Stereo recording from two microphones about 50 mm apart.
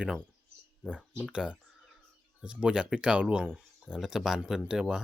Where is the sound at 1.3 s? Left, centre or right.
Centre.